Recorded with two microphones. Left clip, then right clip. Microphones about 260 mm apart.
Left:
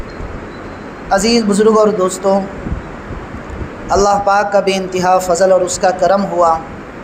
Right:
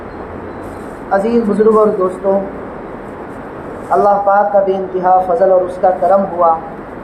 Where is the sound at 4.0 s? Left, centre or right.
Left.